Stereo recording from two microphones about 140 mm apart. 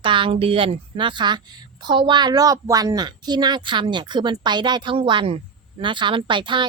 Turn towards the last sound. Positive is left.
turn(degrees=-35)  # may be behind; listen again after turning